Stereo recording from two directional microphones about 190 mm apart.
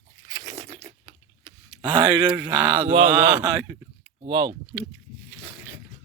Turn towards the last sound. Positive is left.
turn(degrees=-20)  # may be behind; listen again after turning